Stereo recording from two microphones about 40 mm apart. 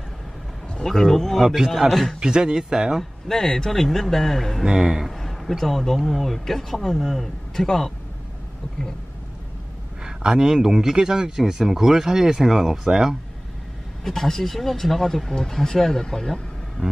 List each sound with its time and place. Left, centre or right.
0.8 s speech: centre
1.4 s speech: centre
1.9 s a man's voice: centre
2.2 s speech: centre
3.0 s speech: centre
4.7 s speech: centre
5.1 s a sound: centre
5.6 s speech: centre
10.0 s speech: centre
14.0 s speech: centre
16.8 s music: right